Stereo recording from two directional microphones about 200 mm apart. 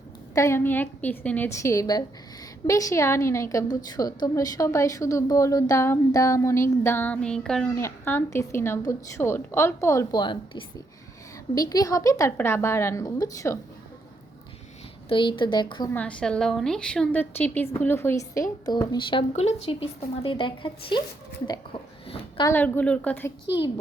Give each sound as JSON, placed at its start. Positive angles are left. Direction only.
{"t": 0.3, "sound": "a woman's voice", "side_deg": 15}
{"t": 15.1, "sound": "a woman's voice", "side_deg": 25}
{"t": 15.9, "sound": "a woman's voice", "side_deg": 5}
{"t": 19.3, "sound": "a woman's voice", "side_deg": 30}
{"t": 21.4, "sound": "a sound", "side_deg": 25}
{"t": 22.4, "sound": "a woman's voice", "side_deg": 10}